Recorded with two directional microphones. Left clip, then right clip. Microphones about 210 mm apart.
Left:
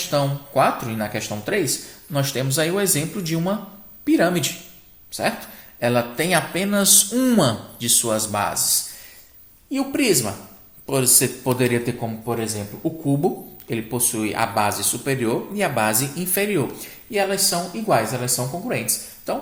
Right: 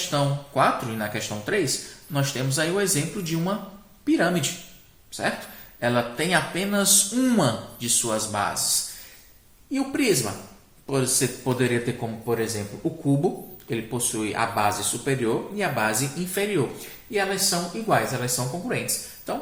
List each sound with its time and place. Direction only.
0.1 s speech: 35° left (ahead or behind)
5.8 s speech: 40° left (ahead or behind)
9.7 s speech: 40° left (ahead or behind)
13.2 s speech: 35° left (ahead or behind)